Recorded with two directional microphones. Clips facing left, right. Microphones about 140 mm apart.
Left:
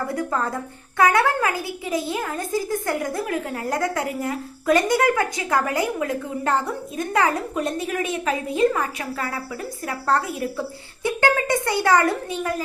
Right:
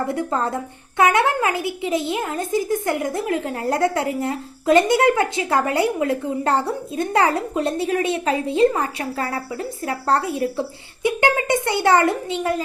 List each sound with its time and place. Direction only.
0.1 s a woman's voice: 25° right (ahead or behind)
11.0 s a woman's voice: 20° right (ahead or behind)